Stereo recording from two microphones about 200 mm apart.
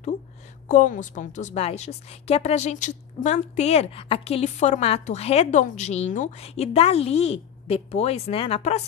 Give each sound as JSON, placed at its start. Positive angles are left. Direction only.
{"t": 0.7, "sound": "a woman's voice", "side_deg": 40}